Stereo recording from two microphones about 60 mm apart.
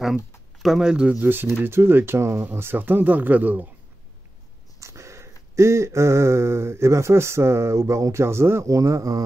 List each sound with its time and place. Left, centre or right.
0.0 s speech: centre
1.2 s speech: right
2.4 s speech: right
4.7 s a sound: right
8.6 s speech: right